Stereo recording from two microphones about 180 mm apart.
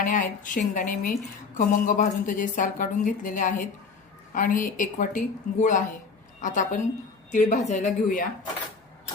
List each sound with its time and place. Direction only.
0.0 s a woman's voice: 45° left (ahead or behind)